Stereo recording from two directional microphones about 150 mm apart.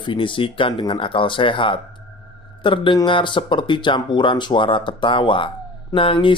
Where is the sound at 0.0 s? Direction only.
35° left (ahead or behind).